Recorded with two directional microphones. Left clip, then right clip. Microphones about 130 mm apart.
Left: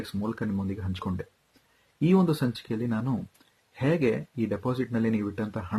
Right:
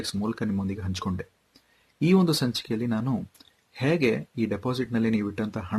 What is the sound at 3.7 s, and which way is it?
Speech, 20° right (ahead or behind).